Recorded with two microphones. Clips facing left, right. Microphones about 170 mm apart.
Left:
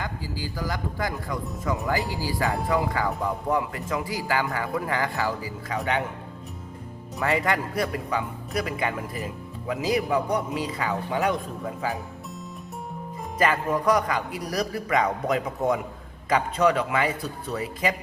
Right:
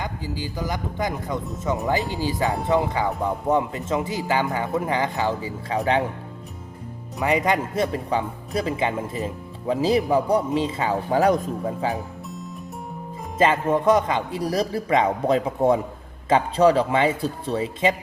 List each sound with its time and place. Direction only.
0.0 s a man's voice: 20° right (ahead or behind)
7.2 s a man's voice: 20° right (ahead or behind)
13.4 s a man's voice: 25° right (ahead or behind)